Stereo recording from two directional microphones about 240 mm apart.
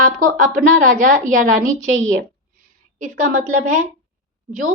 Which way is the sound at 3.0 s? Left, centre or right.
Right.